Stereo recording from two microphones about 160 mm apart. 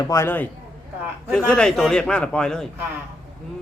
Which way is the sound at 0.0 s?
20° left (ahead or behind).